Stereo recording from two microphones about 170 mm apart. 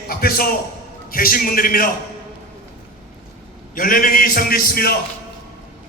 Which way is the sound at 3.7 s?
55° left (ahead or behind).